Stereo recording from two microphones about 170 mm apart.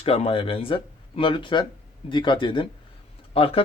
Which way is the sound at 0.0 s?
35° left (ahead or behind).